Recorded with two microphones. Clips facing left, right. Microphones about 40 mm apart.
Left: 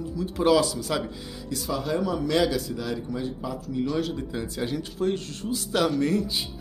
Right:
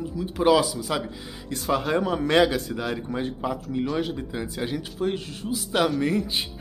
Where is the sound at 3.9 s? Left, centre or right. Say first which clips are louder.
Even; right.